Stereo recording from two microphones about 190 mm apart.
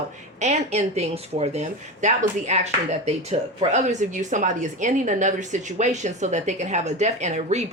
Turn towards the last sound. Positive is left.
turn(degrees=-35)  # may be behind; listen again after turning